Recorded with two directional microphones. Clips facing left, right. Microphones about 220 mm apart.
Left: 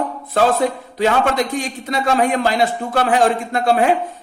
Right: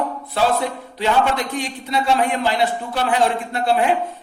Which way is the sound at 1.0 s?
45° left (ahead or behind).